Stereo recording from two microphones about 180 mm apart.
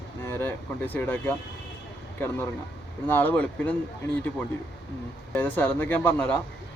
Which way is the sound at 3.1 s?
10° left (ahead or behind).